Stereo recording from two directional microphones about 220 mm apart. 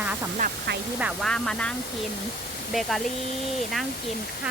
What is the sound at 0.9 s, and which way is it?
Speech, centre (ahead or behind).